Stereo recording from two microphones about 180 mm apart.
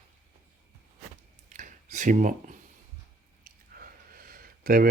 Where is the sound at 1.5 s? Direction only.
45° right (ahead or behind).